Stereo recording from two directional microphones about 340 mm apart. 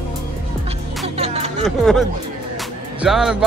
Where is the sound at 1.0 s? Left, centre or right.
Centre.